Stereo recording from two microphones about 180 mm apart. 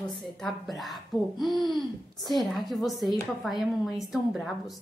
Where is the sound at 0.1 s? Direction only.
Centre (ahead or behind).